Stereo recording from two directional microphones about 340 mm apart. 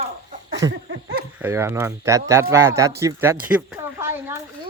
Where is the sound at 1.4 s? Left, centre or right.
Centre.